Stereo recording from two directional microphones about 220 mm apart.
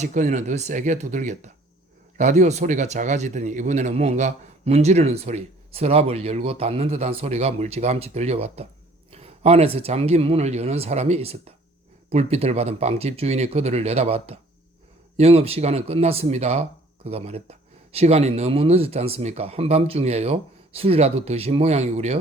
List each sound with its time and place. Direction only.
0.0 s speech: 35° right (ahead or behind)